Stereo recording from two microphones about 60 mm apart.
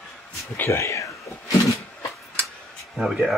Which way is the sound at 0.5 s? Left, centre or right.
Left.